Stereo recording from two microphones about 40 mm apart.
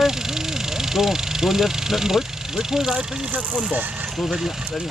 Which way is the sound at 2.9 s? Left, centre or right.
Right.